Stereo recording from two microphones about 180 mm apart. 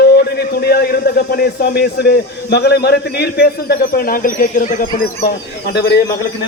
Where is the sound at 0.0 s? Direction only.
60° left (ahead or behind).